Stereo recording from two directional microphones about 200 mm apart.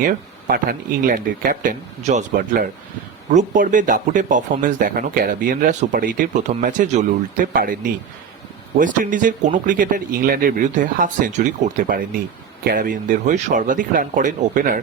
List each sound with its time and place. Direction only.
0.0 s speech: 45° right (ahead or behind)
8.8 s speech: 40° right (ahead or behind)